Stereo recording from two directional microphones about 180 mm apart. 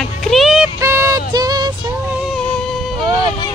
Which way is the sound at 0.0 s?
Centre (ahead or behind).